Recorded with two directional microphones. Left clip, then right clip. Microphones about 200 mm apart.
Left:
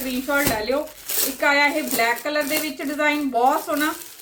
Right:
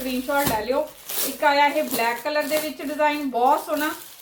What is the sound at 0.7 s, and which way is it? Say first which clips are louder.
A woman's voice: even; 20° left (ahead or behind).